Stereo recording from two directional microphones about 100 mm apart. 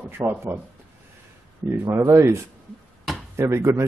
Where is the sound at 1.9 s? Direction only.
25° right (ahead or behind).